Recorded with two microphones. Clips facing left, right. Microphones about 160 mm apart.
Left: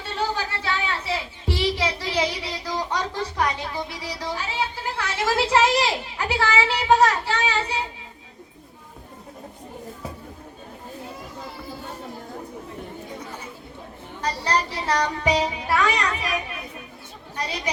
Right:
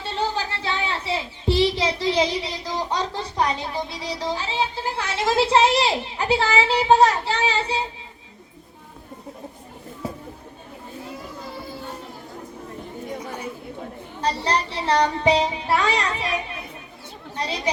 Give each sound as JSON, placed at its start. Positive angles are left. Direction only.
{"t": 0.0, "sound": "a sound", "side_deg": -25}
{"t": 14.2, "sound": "music", "side_deg": -25}
{"t": 17.3, "sound": "speech", "side_deg": -25}